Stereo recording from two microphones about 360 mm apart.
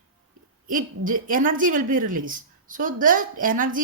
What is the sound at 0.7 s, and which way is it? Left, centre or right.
A woman's voice, right.